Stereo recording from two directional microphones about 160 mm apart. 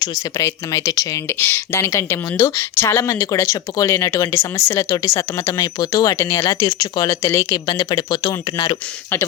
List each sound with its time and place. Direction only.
0.0 s speech: 20° left (ahead or behind)